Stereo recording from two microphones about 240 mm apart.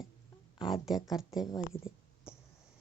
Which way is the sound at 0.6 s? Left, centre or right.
Centre.